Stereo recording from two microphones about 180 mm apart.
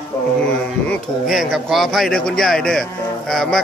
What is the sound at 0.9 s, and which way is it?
A man's voice, centre (ahead or behind).